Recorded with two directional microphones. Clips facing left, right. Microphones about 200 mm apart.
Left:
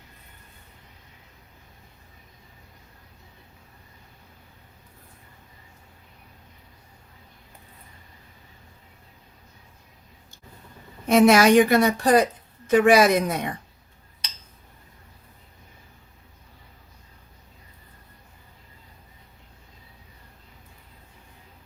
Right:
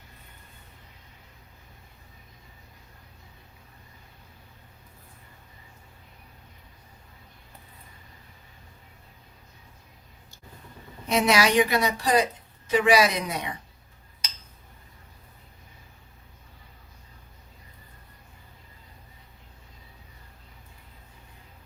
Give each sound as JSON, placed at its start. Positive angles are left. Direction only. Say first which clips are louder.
{"t": 11.0, "sound": "a woman's voice", "louder": "left 7 dB", "side_deg": 50}